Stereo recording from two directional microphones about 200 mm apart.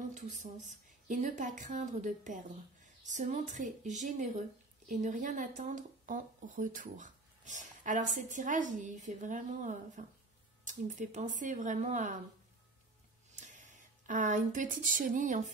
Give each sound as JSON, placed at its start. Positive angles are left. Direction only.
{"t": 0.1, "sound": "speech", "side_deg": -35}
{"t": 13.3, "sound": "speech", "side_deg": -40}